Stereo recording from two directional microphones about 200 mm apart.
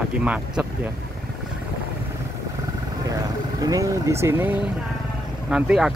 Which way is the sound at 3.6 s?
15° right (ahead or behind).